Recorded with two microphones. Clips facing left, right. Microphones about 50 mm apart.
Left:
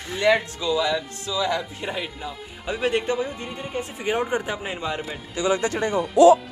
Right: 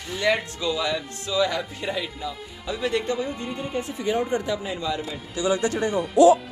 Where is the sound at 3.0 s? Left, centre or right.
Left.